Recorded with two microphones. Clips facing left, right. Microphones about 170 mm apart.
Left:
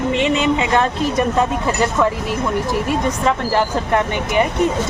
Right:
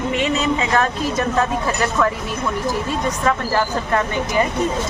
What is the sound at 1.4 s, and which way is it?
Speech, 20° left (ahead or behind).